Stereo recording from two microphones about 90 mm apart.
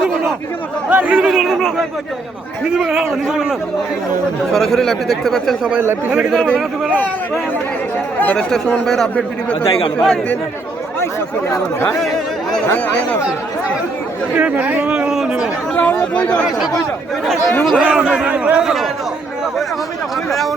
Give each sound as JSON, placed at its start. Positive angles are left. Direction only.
{"t": 0.9, "sound": "a man's voice", "side_deg": -15}
{"t": 4.5, "sound": "speech", "side_deg": 5}
{"t": 6.1, "sound": "a man's voice", "side_deg": -10}
{"t": 6.3, "sound": "speech", "side_deg": 5}
{"t": 8.2, "sound": "speech", "side_deg": 15}
{"t": 11.0, "sound": "speech", "side_deg": 30}
{"t": 14.3, "sound": "speech", "side_deg": -15}
{"t": 15.7, "sound": "speech", "side_deg": 15}
{"t": 17.7, "sound": "a man's voice", "side_deg": -10}